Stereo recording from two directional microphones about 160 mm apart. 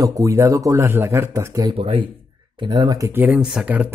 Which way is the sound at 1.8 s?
35° right (ahead or behind).